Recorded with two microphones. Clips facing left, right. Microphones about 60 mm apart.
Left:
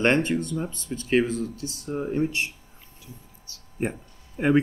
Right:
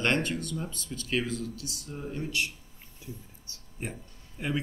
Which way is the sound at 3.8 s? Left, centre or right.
Left.